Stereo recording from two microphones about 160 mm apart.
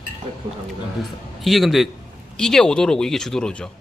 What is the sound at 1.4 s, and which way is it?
Speech, centre (ahead or behind).